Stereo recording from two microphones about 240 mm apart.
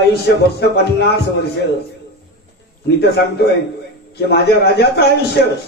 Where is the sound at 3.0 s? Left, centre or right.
Left.